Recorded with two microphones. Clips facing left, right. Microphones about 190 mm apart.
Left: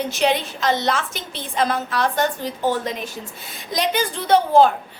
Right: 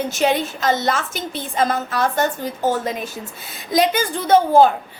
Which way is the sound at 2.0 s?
5° right (ahead or behind).